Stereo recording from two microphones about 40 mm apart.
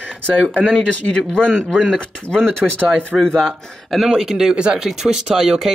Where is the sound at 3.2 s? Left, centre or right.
Centre.